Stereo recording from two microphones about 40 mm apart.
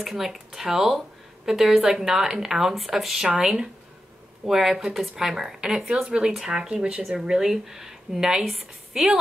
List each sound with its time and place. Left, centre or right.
0.0 s speech: centre
6.0 s speech: right